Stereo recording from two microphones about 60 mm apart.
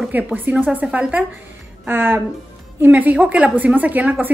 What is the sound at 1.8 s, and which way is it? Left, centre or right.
Speech, right.